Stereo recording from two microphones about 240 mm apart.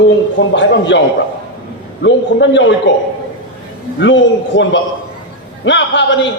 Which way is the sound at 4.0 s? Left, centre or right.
Left.